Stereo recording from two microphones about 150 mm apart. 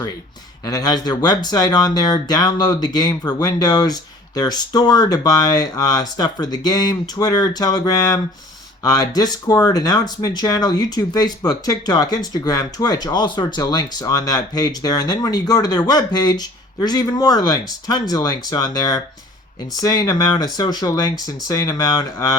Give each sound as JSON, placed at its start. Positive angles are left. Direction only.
{"t": 0.6, "sound": "speech", "side_deg": 25}